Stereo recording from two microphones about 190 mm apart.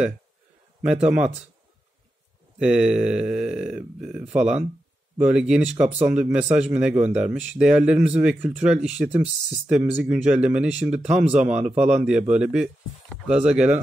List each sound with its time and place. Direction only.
1.0 s speech: 5° right (ahead or behind)
2.6 s speech: 5° right (ahead or behind)